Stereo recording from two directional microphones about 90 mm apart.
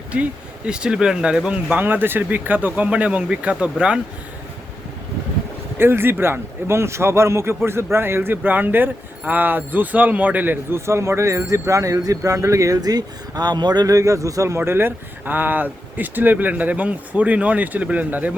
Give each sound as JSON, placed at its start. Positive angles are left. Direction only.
{"t": 0.1, "sound": "speech", "side_deg": -15}
{"t": 1.7, "sound": "speech", "side_deg": -20}
{"t": 5.7, "sound": "a man's voice", "side_deg": -25}